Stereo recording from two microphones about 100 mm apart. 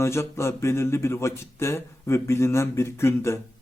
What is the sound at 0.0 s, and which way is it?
Speech, 30° left (ahead or behind).